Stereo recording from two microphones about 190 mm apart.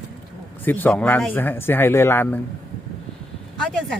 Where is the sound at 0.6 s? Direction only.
10° left (ahead or behind).